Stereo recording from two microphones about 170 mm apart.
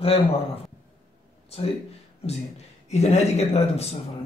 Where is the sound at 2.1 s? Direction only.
40° left (ahead or behind).